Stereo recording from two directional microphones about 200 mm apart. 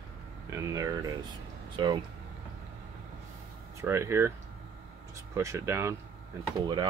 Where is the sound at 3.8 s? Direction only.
15° right (ahead or behind).